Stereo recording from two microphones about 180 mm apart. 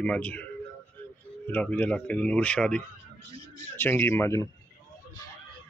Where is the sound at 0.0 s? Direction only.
5° left (ahead or behind).